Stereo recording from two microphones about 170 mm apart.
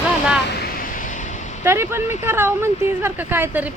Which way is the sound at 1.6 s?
15° right (ahead or behind).